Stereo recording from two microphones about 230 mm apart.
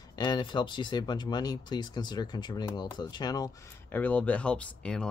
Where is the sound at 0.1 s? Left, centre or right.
Centre.